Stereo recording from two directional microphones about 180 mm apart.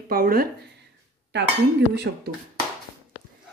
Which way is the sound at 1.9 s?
65° right (ahead or behind).